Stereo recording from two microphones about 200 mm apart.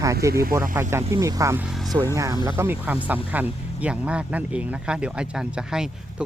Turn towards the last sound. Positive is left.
turn(degrees=-5)  # may be behind; listen again after turning